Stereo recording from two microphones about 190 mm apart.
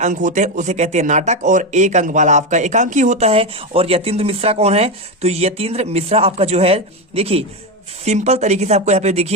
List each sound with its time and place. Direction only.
0.0 s speech: 40° right (ahead or behind)